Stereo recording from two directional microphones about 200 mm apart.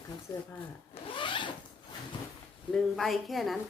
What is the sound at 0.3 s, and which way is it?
Speech, 15° left (ahead or behind).